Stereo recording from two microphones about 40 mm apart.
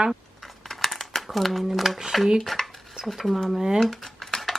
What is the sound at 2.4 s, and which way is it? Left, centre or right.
Cutlery, centre.